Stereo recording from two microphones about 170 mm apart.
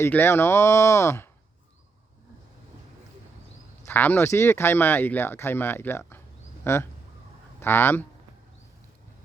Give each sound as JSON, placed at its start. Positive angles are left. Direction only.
{"t": 0.0, "sound": "speech", "side_deg": 15}
{"t": 3.8, "sound": "speech", "side_deg": 10}